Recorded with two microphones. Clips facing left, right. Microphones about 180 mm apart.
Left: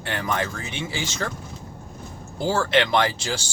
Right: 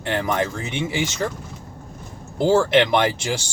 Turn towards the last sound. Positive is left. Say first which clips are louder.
# right 2 dB
turn(degrees=-20)  # may be behind; listen again after turning